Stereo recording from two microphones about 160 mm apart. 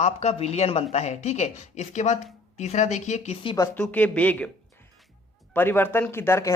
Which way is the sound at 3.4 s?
25° left (ahead or behind).